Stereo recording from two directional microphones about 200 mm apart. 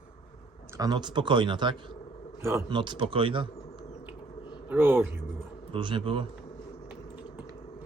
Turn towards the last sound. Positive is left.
turn(degrees=-25)  # may be behind; listen again after turning